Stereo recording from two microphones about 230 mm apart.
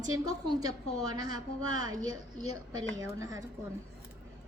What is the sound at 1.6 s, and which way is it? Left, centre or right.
A woman's voice, right.